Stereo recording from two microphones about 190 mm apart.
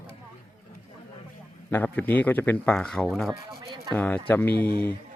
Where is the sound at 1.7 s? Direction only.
10° left (ahead or behind).